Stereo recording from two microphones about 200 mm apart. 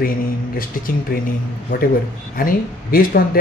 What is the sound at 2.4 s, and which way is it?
Speech, 45° left (ahead or behind).